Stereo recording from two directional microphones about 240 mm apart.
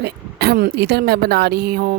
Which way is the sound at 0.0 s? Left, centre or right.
Right.